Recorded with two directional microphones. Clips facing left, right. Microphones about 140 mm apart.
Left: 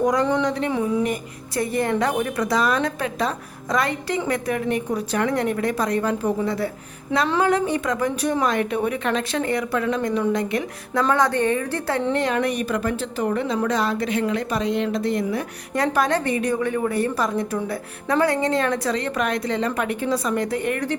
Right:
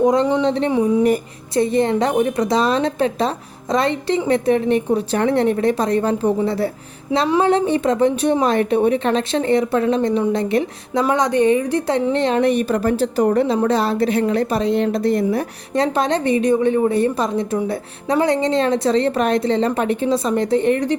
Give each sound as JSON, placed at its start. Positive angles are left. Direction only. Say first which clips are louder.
{"t": 0.0, "sound": "a woman's voice", "louder": "right 4 dB", "side_deg": -25}
{"t": 7.1, "sound": "a woman's voice", "louder": "right 3 dB", "side_deg": -10}
{"t": 7.4, "sound": "a woman's voice", "louder": "right 5 dB", "side_deg": -25}
{"t": 11.0, "sound": "a woman's voice", "louder": "right 4 dB", "side_deg": -15}
{"t": 15.7, "sound": "a woman's voice", "louder": "right 3 dB", "side_deg": -25}